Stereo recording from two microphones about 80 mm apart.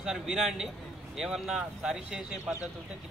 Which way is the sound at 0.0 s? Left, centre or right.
Centre.